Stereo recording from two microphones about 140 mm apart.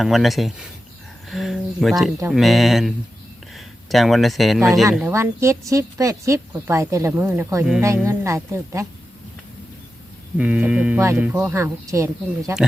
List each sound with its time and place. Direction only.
0.0 s speech: centre (ahead or behind)
5.0 s speech: 20° right (ahead or behind)
10.3 s speech: 10° right (ahead or behind)